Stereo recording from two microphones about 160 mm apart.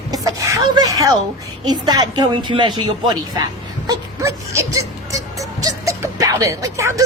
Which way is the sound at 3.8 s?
20° right (ahead or behind).